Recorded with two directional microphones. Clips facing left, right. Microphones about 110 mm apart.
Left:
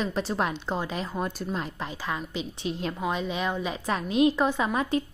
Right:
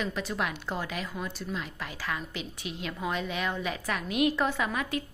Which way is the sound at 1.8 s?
25° left (ahead or behind).